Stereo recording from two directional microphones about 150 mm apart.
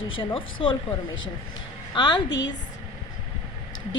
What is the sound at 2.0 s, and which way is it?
Speech, 30° left (ahead or behind).